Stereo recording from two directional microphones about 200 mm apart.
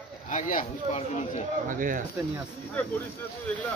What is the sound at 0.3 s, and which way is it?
Speech, 40° left (ahead or behind).